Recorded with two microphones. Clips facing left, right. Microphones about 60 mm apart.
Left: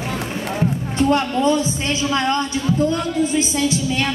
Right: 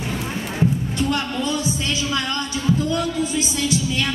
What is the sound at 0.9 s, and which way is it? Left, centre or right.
A woman's voice, left.